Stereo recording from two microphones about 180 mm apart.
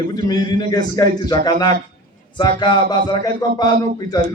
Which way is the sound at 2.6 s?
25° left (ahead or behind).